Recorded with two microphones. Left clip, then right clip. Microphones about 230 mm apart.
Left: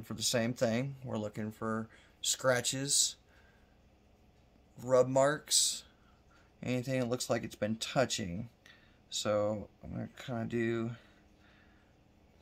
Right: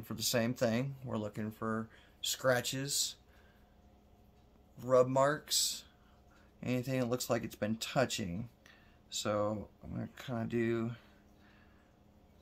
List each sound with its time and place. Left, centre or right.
0.0 s speech: centre
4.7 s speech: centre